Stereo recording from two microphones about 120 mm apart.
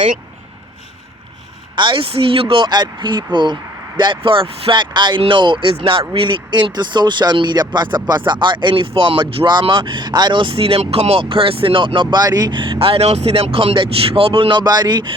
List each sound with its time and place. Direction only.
1.7 s speech: 40° right (ahead or behind)